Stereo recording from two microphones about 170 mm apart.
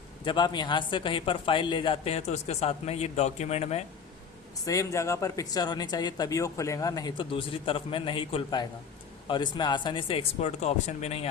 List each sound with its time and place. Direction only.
0.3 s speech: 25° left (ahead or behind)
4.6 s speech: 20° left (ahead or behind); by 11.3 s 35° left (ahead or behind)